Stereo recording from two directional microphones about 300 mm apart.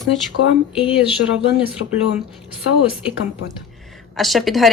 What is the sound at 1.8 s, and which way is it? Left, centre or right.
Speech, left.